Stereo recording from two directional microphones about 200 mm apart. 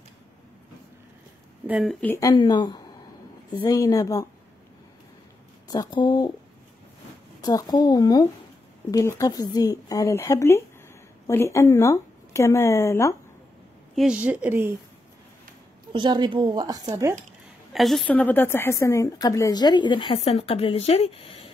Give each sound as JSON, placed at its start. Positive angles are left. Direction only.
{"t": 1.7, "sound": "a woman's voice", "side_deg": 0}
{"t": 2.1, "sound": "a woman's voice", "side_deg": 15}
{"t": 5.7, "sound": "a woman's voice", "side_deg": 20}
{"t": 7.4, "sound": "a woman's voice", "side_deg": 20}
{"t": 13.9, "sound": "a woman's voice", "side_deg": -5}
{"t": 15.9, "sound": "a woman's voice", "side_deg": -20}
{"t": 17.7, "sound": "a woman's voice", "side_deg": 0}